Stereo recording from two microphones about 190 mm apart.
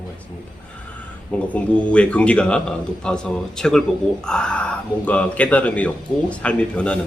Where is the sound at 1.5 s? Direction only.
5° left (ahead or behind).